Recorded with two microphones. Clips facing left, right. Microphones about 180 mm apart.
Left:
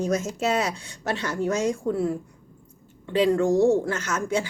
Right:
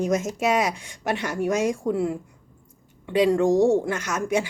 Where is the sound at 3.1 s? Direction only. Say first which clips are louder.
Right 1 dB; 15° right (ahead or behind).